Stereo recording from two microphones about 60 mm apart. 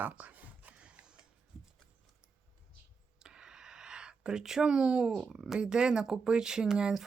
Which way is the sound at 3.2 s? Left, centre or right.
Centre.